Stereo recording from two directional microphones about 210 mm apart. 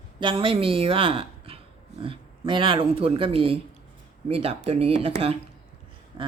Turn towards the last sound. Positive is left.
turn(degrees=-20)  # may be behind; listen again after turning